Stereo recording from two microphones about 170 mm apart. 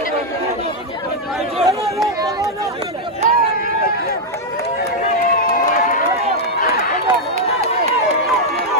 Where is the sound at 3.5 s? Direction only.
60° left (ahead or behind).